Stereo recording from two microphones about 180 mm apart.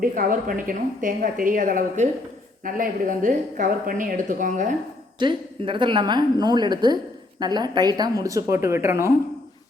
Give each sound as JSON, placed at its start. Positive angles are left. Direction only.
{"t": 0.0, "sound": "a woman's voice", "side_deg": -50}
{"t": 5.2, "sound": "a woman's voice", "side_deg": -25}